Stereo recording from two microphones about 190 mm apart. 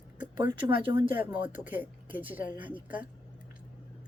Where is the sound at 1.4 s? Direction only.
10° right (ahead or behind).